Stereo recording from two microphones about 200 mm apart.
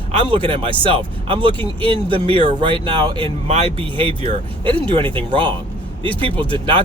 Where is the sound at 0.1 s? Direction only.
25° right (ahead or behind).